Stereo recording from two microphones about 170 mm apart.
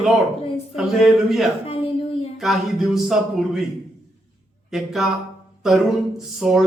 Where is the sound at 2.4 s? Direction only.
Centre (ahead or behind).